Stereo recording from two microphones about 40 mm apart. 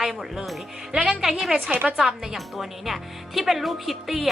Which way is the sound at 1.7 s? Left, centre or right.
Right.